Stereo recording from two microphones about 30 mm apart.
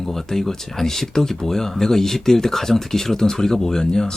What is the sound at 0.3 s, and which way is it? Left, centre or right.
A man's voice, centre.